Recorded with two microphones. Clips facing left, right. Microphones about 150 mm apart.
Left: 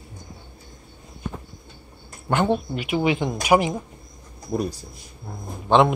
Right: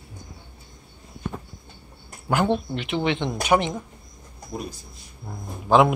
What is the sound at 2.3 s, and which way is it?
Speech, centre (ahead or behind).